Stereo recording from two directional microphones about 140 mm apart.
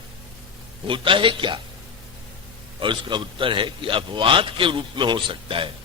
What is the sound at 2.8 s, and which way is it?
A man's voice, 35° right (ahead or behind).